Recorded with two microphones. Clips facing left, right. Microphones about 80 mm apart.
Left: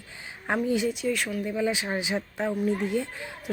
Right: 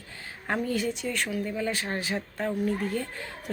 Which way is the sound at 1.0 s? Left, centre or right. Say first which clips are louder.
Left 2 dB; centre.